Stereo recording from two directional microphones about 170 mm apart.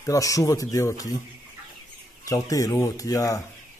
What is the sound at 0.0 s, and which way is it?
Speech, 20° left (ahead or behind).